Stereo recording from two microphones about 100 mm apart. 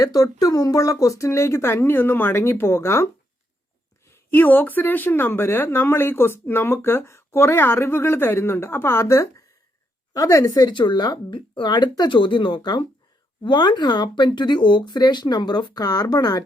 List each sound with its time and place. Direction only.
0.0 s speech: 35° left (ahead or behind)
4.1 s speech: 20° left (ahead or behind)
10.7 s speech: 50° left (ahead or behind)